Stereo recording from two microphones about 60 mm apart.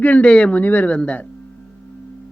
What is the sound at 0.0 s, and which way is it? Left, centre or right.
Speech, left.